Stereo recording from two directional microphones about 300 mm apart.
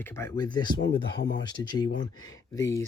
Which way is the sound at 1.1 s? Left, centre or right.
Left.